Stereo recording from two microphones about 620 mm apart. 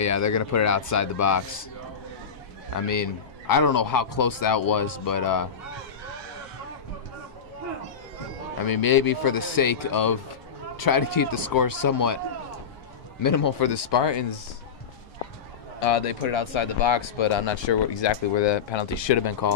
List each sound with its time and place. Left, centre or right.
0.0 s speech: left
2.7 s a man's voice: left
8.6 s a man's voice: left
13.2 s a man's voice: left
15.8 s speech: left